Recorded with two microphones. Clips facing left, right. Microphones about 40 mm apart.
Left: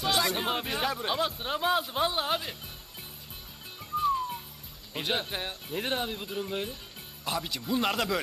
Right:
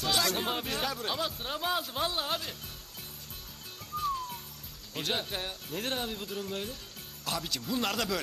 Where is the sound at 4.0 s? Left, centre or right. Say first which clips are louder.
Left 5 dB; centre.